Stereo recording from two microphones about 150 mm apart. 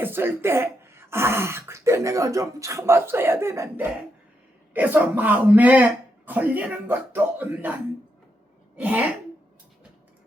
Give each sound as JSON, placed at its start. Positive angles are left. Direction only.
{"t": 0.0, "sound": "speech", "side_deg": -15}
{"t": 8.7, "sound": "speech", "side_deg": -10}